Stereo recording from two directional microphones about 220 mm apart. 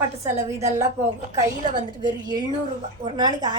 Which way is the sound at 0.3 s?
15° right (ahead or behind).